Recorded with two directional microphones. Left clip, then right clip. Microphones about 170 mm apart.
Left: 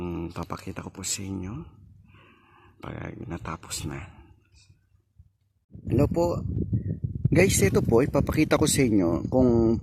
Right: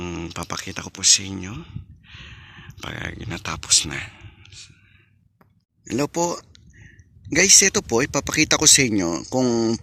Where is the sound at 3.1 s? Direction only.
15° right (ahead or behind).